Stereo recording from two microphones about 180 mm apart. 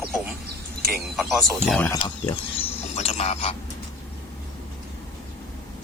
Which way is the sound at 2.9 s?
40° left (ahead or behind).